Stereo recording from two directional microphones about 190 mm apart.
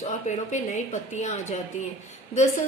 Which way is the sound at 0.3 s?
40° left (ahead or behind).